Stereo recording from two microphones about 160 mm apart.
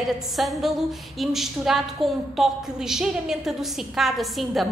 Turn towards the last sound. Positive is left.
turn(degrees=0)  # may be behind; listen again after turning